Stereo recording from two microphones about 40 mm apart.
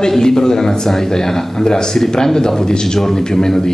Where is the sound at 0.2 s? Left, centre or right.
Centre.